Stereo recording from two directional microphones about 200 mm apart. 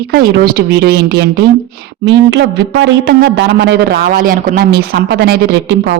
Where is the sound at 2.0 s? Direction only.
65° right (ahead or behind).